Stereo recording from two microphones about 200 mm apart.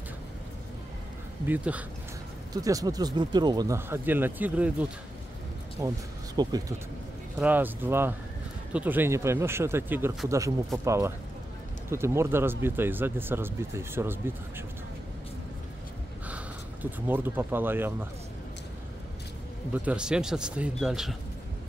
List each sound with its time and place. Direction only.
1.5 s speech: 5° right (ahead or behind)
2.5 s speech: 15° right (ahead or behind)
7.3 s speech: 10° right (ahead or behind)
17.1 s speech: 10° right (ahead or behind)
19.7 s speech: 5° right (ahead or behind)